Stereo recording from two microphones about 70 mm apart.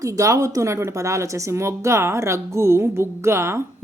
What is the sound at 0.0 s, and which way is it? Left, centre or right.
A woman's voice, right.